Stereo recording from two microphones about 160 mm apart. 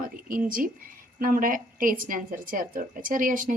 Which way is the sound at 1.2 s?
60° right (ahead or behind).